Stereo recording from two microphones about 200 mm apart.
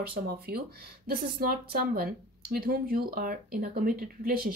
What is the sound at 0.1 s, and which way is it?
Speech, 50° right (ahead or behind).